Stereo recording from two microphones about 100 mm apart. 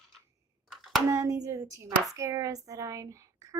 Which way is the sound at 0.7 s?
Centre (ahead or behind).